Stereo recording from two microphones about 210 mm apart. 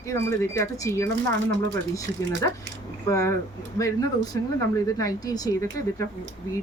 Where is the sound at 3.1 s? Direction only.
15° left (ahead or behind).